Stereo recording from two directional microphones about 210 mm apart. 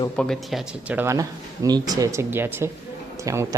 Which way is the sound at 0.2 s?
Centre (ahead or behind).